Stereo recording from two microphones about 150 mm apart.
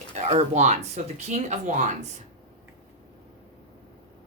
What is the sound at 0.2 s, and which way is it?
Speech, 50° right (ahead or behind).